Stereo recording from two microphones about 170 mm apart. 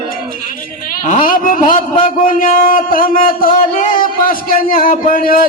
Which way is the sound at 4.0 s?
55° left (ahead or behind).